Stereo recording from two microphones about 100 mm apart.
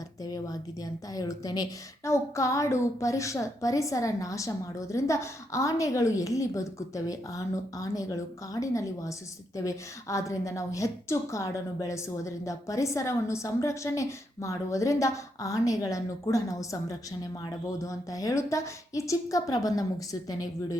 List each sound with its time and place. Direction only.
0.2 s a woman's voice: 40° left (ahead or behind)